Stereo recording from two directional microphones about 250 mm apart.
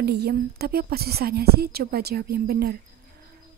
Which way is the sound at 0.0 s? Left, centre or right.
Right.